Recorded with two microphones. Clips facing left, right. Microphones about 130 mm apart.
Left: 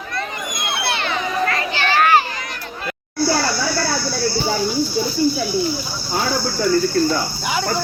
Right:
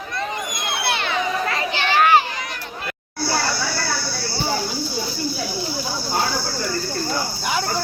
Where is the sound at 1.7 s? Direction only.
20° right (ahead or behind).